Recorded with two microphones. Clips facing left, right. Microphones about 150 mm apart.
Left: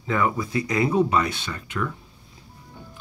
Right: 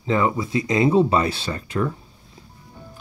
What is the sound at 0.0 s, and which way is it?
Speech, 25° right (ahead or behind).